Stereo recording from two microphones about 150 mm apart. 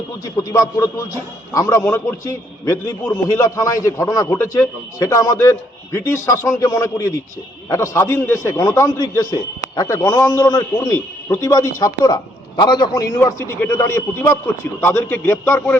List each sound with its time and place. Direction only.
0.3 s a man's voice: 25° left (ahead or behind)
13.1 s a man's voice: 15° left (ahead or behind)